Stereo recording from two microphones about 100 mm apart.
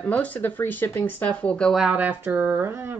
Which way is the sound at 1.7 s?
10° right (ahead or behind).